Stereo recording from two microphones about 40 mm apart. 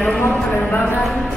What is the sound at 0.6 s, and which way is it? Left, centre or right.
Speech, left.